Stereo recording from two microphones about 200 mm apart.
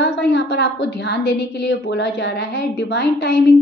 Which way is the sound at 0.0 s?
55° left (ahead or behind).